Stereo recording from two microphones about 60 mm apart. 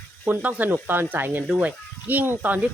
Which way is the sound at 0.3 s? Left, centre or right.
Right.